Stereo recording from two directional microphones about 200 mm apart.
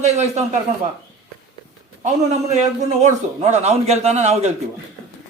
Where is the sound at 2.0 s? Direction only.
35° right (ahead or behind).